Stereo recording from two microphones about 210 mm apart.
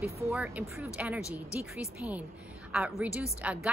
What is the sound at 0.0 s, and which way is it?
A woman's voice, centre (ahead or behind).